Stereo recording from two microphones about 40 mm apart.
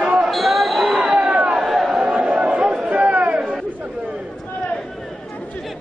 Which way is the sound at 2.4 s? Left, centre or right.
Right.